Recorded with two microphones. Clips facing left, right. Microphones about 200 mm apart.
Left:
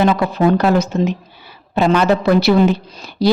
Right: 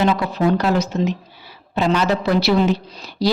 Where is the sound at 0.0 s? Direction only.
50° left (ahead or behind).